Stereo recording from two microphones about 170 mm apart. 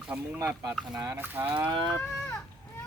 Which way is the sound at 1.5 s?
25° right (ahead or behind).